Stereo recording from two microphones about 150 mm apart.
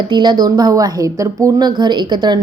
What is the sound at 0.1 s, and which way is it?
A woman's voice, 30° right (ahead or behind).